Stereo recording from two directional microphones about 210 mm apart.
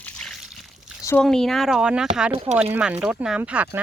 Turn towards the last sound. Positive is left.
turn(degrees=-10)  # may be behind; listen again after turning